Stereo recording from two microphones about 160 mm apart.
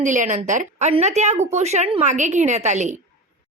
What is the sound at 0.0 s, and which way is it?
A woman's voice, 50° right (ahead or behind).